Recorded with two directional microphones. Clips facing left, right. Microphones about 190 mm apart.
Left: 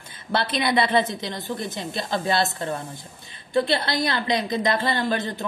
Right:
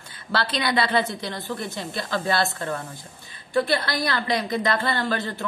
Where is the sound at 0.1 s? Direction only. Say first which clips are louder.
Left 1 dB; 20° left (ahead or behind).